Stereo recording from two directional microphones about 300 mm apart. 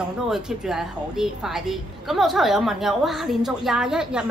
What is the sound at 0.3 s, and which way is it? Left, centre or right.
A woman's voice, centre.